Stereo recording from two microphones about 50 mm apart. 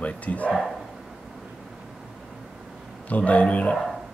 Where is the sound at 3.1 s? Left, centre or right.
Left.